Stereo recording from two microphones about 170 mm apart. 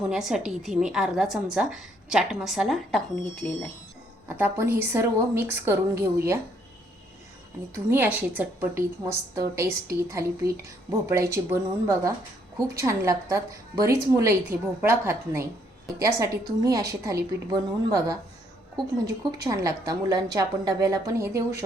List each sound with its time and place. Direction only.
0.1 s a woman's voice: centre (ahead or behind)
4.3 s a woman's voice: 10° right (ahead or behind)
7.7 s a woman's voice: 10° right (ahead or behind)